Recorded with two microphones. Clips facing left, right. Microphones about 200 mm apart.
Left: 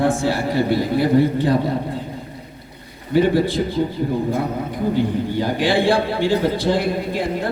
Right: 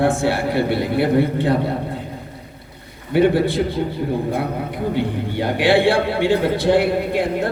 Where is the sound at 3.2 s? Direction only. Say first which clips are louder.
Right 1 dB; 65° right (ahead or behind).